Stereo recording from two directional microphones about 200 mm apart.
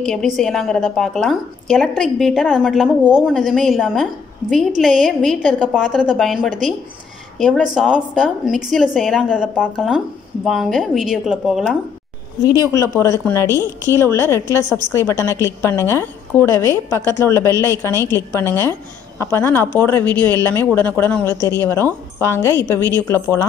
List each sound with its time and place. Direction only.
0.0 s a woman's voice: 5° left (ahead or behind)
12.4 s a woman's voice: 15° left (ahead or behind)